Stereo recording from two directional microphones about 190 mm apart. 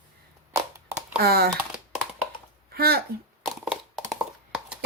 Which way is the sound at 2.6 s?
55° right (ahead or behind).